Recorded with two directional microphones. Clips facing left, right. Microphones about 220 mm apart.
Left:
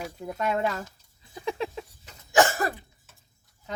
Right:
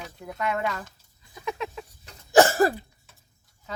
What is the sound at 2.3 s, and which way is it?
Cough, 35° right (ahead or behind).